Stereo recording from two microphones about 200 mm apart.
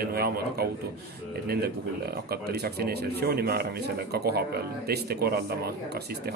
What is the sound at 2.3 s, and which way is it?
Speech, 50° right (ahead or behind).